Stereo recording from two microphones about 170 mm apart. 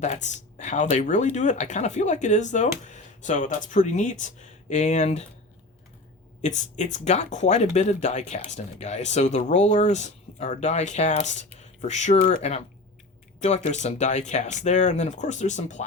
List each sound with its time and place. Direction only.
0.0 s speech: 45° left (ahead or behind)
6.4 s speech: 45° left (ahead or behind)